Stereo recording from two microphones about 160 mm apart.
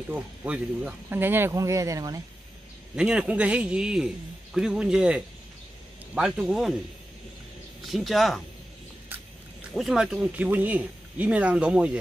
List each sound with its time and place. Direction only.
0.1 s speech: 10° right (ahead or behind)
3.0 s speech: 5° right (ahead or behind)
7.8 s speech: centre (ahead or behind)
9.8 s speech: centre (ahead or behind)